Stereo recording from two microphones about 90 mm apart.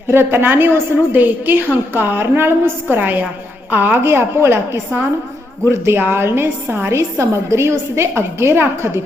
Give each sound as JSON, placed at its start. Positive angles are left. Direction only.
{"t": 0.1, "sound": "a woman's voice", "side_deg": -25}